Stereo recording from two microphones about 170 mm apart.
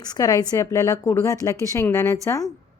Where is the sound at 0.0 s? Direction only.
20° left (ahead or behind).